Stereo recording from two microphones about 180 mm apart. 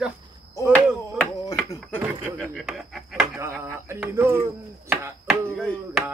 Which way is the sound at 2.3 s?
5° left (ahead or behind).